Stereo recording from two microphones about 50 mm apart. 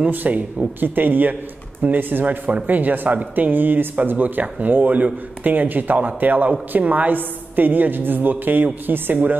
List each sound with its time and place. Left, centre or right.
0.1 s speech: right